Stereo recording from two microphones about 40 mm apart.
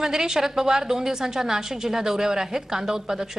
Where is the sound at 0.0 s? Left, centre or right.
Centre.